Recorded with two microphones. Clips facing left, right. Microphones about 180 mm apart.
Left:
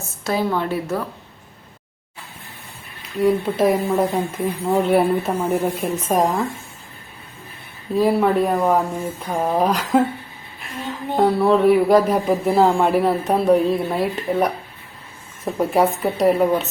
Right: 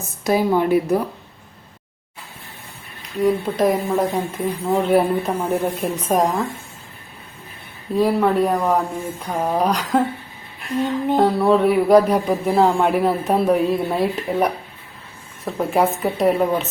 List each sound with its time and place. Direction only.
0.0 s a woman's voice: 15° right (ahead or behind)
3.2 s speech: centre (ahead or behind)
7.9 s speech: centre (ahead or behind)
11.2 s speech: centre (ahead or behind)
15.5 s speech: centre (ahead or behind)